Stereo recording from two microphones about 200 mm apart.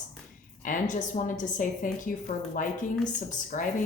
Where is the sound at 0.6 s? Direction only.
40° left (ahead or behind).